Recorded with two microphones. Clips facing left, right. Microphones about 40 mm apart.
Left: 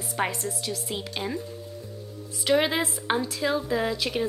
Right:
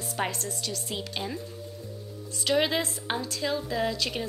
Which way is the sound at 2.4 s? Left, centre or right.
Centre.